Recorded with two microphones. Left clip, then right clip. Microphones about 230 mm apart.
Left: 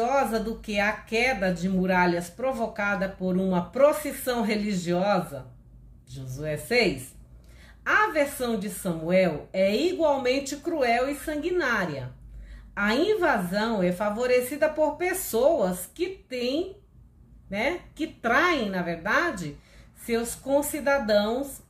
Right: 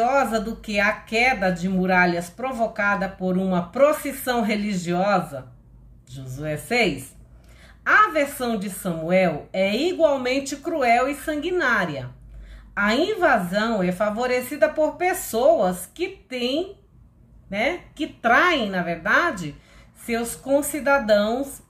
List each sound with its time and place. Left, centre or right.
0.0 s speech: centre
6.4 s speech: centre